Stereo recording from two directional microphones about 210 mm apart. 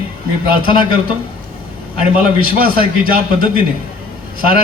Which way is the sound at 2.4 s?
45° right (ahead or behind).